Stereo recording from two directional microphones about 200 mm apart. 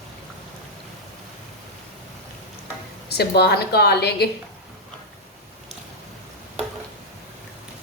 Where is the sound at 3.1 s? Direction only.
55° left (ahead or behind).